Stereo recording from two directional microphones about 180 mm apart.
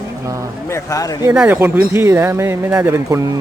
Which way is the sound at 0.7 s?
15° left (ahead or behind).